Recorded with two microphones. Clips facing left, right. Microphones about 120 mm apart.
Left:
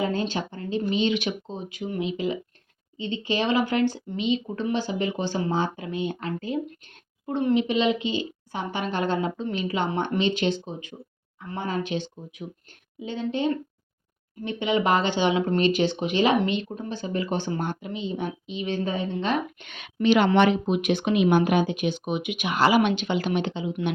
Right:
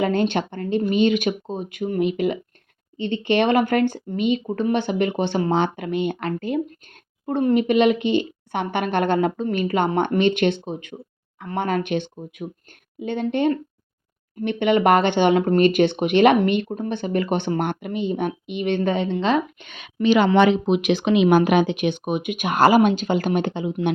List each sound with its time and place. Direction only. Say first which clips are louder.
0.0 s speech: right 6 dB; 65° right (ahead or behind)
7.3 s speech: right 4 dB; 50° right (ahead or behind); by 19.3 s 85° right
20.5 s speech: right 4 dB; 85° right; by 23.7 s 50° right (ahead or behind)